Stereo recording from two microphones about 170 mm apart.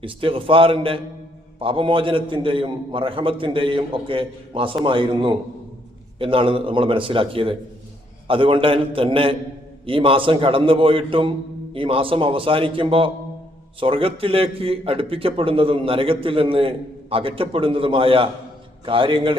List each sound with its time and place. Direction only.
0.0 s a man's voice: 30° right (ahead or behind)